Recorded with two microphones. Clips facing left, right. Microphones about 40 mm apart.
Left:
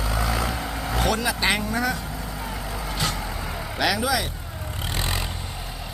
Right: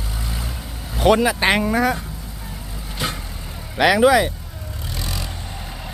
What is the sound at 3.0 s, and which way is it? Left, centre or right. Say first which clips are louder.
Vehicle: right 2 dB; right.